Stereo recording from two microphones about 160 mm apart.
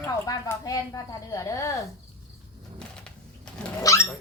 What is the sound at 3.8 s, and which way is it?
Dog, 20° left (ahead or behind).